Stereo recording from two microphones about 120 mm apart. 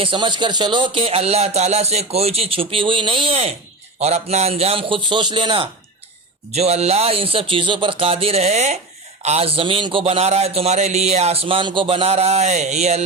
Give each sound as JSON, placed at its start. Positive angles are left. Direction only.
{"t": 0.0, "sound": "speech", "side_deg": -45}
{"t": 4.0, "sound": "speech", "side_deg": -65}
{"t": 6.5, "sound": "a man's voice", "side_deg": -65}